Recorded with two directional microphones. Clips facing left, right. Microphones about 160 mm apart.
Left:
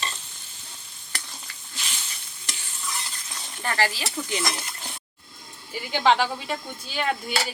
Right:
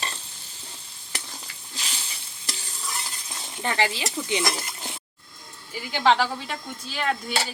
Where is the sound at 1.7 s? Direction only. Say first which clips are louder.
Right 1 dB; 35° right (ahead or behind).